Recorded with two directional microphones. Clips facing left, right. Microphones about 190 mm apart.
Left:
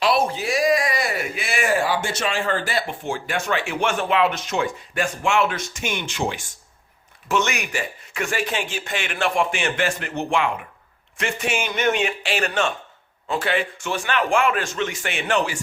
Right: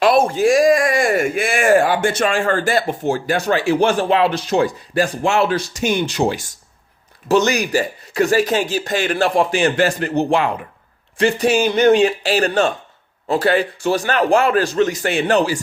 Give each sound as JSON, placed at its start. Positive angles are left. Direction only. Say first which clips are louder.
{"t": 0.0, "sound": "speech", "louder": "right 7 dB", "side_deg": -50}